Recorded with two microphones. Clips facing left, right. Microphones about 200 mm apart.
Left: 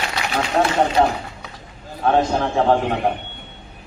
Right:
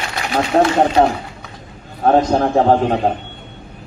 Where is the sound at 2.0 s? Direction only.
45° right (ahead or behind).